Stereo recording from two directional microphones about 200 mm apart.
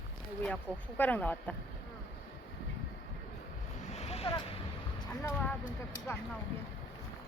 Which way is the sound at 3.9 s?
30° left (ahead or behind).